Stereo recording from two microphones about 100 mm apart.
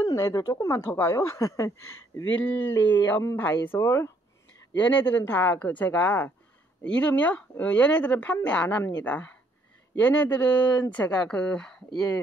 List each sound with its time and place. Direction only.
0.0 s speech: 35° left (ahead or behind)
2.4 s speech: 15° left (ahead or behind)